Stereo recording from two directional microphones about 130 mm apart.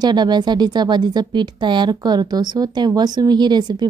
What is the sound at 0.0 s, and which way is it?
A woman's voice, 35° right (ahead or behind).